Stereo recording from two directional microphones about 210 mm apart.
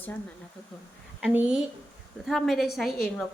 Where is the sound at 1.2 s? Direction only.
5° right (ahead or behind).